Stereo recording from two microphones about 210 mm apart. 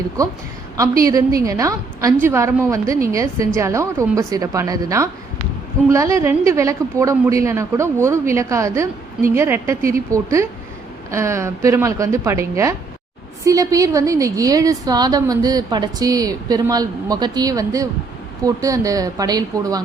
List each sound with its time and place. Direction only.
0.2 s a woman's voice: 15° right (ahead or behind)